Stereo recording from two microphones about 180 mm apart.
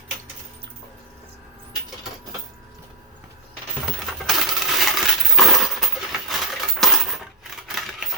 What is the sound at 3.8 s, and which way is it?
Coin, centre (ahead or behind).